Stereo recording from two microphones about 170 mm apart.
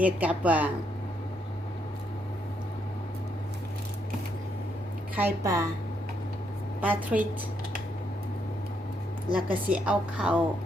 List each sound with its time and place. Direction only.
0.0 s a woman's voice: 10° right (ahead or behind)
5.1 s a woman's voice: 15° right (ahead or behind)
6.8 s a woman's voice: 10° right (ahead or behind)
9.3 s a woman's voice: 10° right (ahead or behind)